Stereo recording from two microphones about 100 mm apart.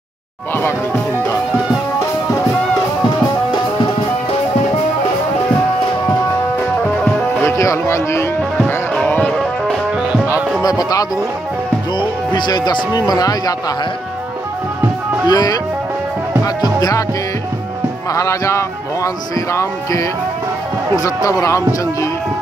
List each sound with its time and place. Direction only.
0.6 s speech: 25° left (ahead or behind)
7.4 s music: 30° left (ahead or behind)
9.0 s music: 15° left (ahead or behind)
10.6 s music: 40° left (ahead or behind)
12.0 s speech: 50° left (ahead or behind)
15.2 s speech: 40° left (ahead or behind)
18.1 s speech: 30° left (ahead or behind)